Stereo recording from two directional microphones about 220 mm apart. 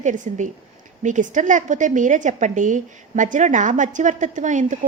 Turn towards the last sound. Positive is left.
turn(degrees=-35)  # may be behind; listen again after turning